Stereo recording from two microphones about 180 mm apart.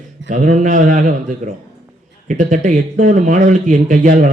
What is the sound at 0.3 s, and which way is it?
Speech, 45° right (ahead or behind).